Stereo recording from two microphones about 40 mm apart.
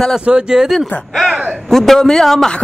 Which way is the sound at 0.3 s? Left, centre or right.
Centre.